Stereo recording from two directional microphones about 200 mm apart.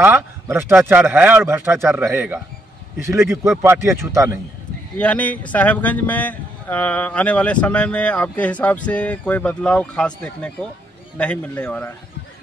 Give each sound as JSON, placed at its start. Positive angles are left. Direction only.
{"t": 0.0, "sound": "a man's voice", "side_deg": -10}
{"t": 4.9, "sound": "speech", "side_deg": 5}